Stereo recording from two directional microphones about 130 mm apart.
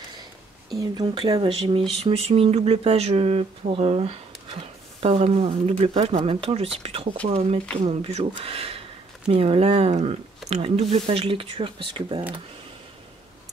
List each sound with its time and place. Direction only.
0.7 s speech: 30° right (ahead or behind)
1.1 s speech: 40° right (ahead or behind)